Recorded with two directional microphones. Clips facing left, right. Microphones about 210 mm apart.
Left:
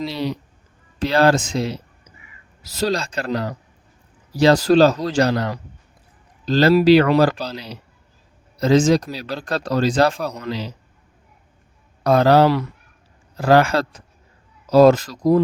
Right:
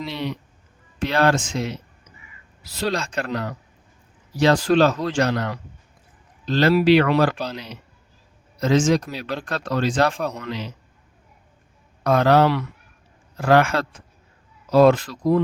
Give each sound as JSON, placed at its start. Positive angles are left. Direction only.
{"t": 0.0, "sound": "speech", "side_deg": 35}
{"t": 10.2, "sound": "a man's voice", "side_deg": 0}
{"t": 10.4, "sound": "speech", "side_deg": 35}
{"t": 12.0, "sound": "speech", "side_deg": 35}